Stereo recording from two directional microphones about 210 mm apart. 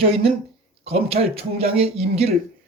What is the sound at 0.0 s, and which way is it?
Speech, 25° right (ahead or behind).